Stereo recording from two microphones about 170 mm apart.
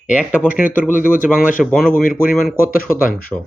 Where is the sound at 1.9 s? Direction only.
55° left (ahead or behind).